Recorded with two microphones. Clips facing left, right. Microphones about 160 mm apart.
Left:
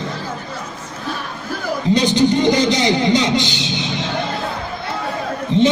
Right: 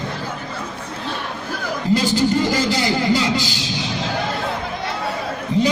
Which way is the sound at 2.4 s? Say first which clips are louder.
Left 4 dB; 20° left (ahead or behind).